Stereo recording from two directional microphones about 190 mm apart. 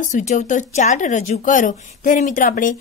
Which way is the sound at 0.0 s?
40° left (ahead or behind).